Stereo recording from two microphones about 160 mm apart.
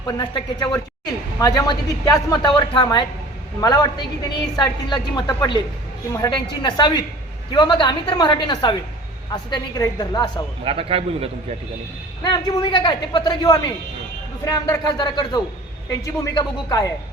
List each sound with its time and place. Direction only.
0.2 s a woman's voice: 25° left (ahead or behind)
10.6 s a man's voice: 35° right (ahead or behind)
12.2 s a woman's voice: 25° left (ahead or behind)